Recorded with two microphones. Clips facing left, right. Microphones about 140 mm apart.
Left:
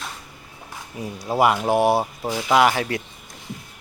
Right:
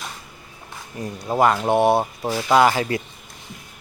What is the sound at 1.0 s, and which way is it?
Speech, 5° left (ahead or behind).